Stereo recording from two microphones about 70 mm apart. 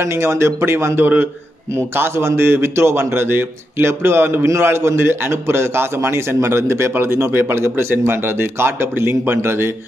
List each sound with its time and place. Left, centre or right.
0.0 s a man's voice: right